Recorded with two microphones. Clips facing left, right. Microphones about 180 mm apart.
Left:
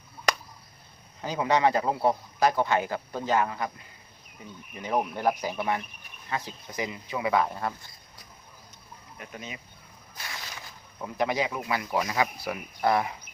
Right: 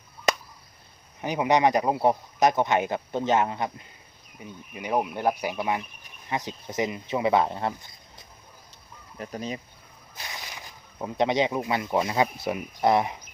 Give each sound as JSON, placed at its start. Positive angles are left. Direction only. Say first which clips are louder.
{"t": 1.2, "sound": "a man's voice", "louder": "right 2 dB", "side_deg": -20}
{"t": 9.1, "sound": "speech", "louder": "right 8 dB", "side_deg": -35}
{"t": 10.2, "sound": "speech", "louder": "right 1 dB", "side_deg": -20}